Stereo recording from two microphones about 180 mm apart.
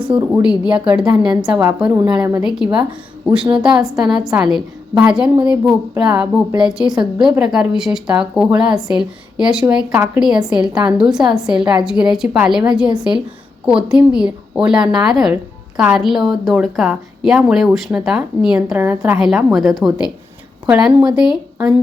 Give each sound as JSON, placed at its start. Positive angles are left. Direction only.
{"t": 0.1, "sound": "a woman's voice", "side_deg": -30}
{"t": 0.4, "sound": "speech", "side_deg": -5}